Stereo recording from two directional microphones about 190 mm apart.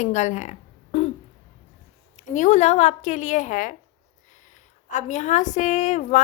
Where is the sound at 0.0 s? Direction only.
40° left (ahead or behind).